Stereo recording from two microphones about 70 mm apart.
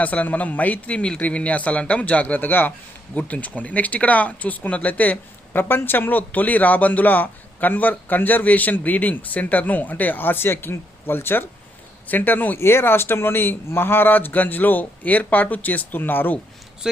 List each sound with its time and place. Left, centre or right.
0.0 s speech: left
16.8 s speech: centre